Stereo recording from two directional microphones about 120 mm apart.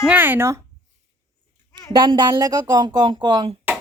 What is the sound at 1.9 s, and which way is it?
Speech, 40° right (ahead or behind).